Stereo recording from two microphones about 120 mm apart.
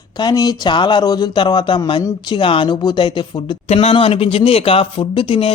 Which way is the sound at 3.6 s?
60° left (ahead or behind).